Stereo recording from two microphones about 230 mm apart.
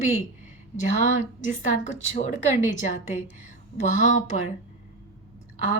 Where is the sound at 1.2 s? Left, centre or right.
Left.